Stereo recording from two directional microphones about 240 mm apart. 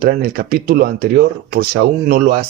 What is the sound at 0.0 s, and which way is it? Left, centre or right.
Speech, right.